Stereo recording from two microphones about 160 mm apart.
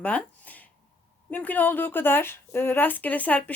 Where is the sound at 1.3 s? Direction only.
10° left (ahead or behind).